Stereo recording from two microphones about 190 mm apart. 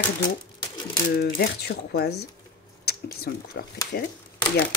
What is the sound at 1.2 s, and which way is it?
Speech, 55° left (ahead or behind).